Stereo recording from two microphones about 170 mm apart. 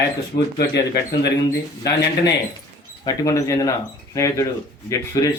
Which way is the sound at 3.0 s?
20° left (ahead or behind).